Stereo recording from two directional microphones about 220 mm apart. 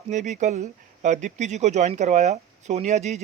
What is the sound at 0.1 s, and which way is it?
Speech, 35° right (ahead or behind).